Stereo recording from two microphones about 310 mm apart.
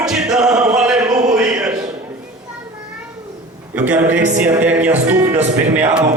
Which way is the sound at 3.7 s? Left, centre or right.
Centre.